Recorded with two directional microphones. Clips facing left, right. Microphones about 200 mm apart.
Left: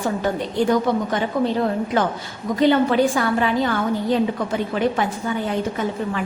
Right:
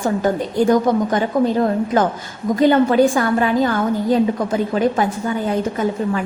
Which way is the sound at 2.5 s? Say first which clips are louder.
Right 3 dB; 45° right (ahead or behind).